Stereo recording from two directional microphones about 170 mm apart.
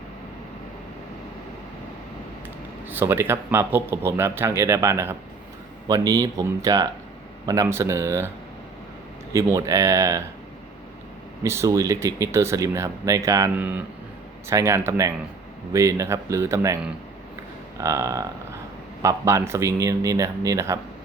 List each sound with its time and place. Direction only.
2.9 s speech: 15° right (ahead or behind)
9.3 s speech: 15° right (ahead or behind)
11.4 s speech: 15° right (ahead or behind)
17.7 s speech: 20° right (ahead or behind)